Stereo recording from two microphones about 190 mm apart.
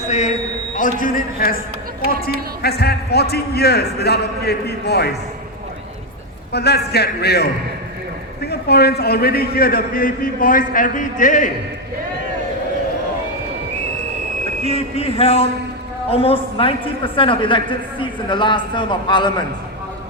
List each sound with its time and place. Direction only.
0.1 s a sound: 40° left (ahead or behind)
0.8 s a man's voice: 45° left (ahead or behind)
6.5 s a man's voice: 60° left (ahead or behind)
8.4 s a man's voice: 60° left (ahead or behind); by 11.5 s 40° left (ahead or behind)
14.6 s a sound: 30° left (ahead or behind)
16.0 s a woman's voice: 30° left (ahead or behind)